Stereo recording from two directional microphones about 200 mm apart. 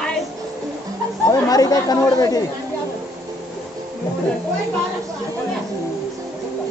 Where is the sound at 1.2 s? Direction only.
15° left (ahead or behind).